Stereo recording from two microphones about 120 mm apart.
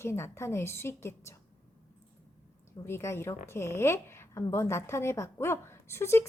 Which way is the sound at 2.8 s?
20° left (ahead or behind).